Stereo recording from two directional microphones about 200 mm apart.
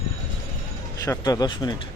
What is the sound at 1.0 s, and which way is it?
Speech, 20° left (ahead or behind).